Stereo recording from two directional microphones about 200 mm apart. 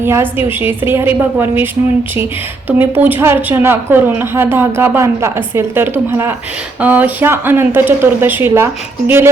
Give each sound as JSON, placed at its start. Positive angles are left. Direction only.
{"t": 0.0, "sound": "a woman's voice", "side_deg": -10}
{"t": 2.6, "sound": "a woman's voice", "side_deg": -10}